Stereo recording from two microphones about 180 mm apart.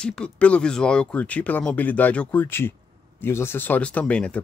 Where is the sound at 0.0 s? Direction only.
5° left (ahead or behind).